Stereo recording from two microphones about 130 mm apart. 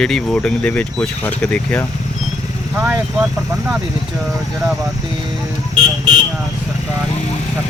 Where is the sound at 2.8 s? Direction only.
15° right (ahead or behind).